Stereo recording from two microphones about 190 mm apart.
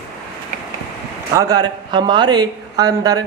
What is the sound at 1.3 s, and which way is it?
Speech, 20° right (ahead or behind).